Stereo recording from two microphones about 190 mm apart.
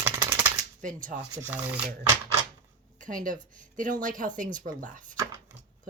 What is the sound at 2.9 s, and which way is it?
Speech, 45° right (ahead or behind).